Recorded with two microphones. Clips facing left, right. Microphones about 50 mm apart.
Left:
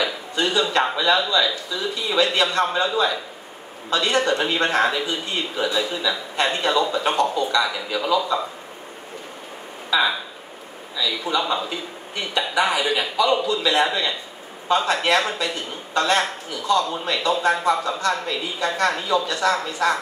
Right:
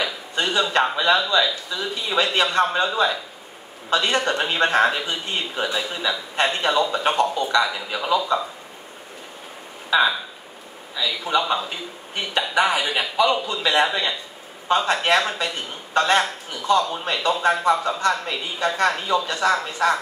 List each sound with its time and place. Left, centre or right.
0.4 s speech: right
11.0 s speech: right